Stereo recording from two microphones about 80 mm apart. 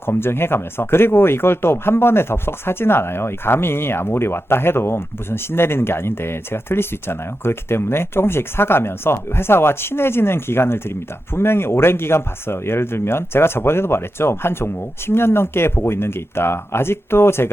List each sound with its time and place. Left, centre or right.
0.0 s speech: left